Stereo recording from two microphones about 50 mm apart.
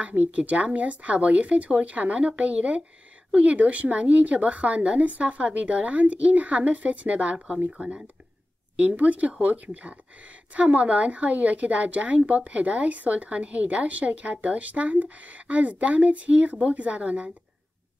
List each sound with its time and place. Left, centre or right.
0.0 s speech: right
7.3 s speech: centre
8.7 s speech: right